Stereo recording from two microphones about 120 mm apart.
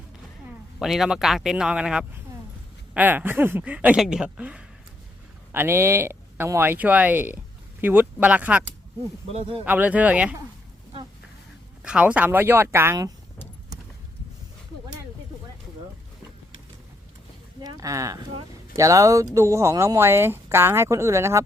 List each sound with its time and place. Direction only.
0.8 s a man's voice: 5° right (ahead or behind)
9.3 s speech: 50° right (ahead or behind)
9.6 s speech: 15° right (ahead or behind)
11.8 s speech: 10° right (ahead or behind); by 13.1 s 25° right (ahead or behind)
17.6 s speech: 30° right (ahead or behind)